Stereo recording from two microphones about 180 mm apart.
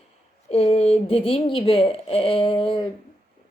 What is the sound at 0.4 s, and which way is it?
A woman's voice, 35° left (ahead or behind).